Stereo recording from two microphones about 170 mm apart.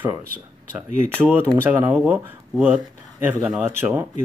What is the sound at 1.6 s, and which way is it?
Speech, 10° right (ahead or behind).